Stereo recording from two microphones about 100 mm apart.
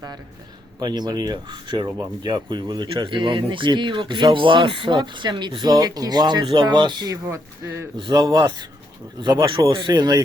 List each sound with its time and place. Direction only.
0.8 s speech: 45° right (ahead or behind)
7.3 s speech: 30° right (ahead or behind)
7.9 s speech: 50° right (ahead or behind)
9.6 s speech: 50° right (ahead or behind)